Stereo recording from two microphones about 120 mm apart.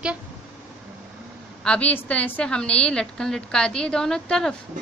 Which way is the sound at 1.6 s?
10° left (ahead or behind).